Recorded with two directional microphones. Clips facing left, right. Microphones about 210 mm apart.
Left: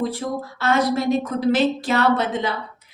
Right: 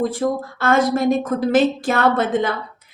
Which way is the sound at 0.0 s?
50° right (ahead or behind).